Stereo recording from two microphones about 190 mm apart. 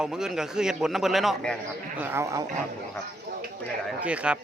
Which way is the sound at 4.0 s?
5° right (ahead or behind).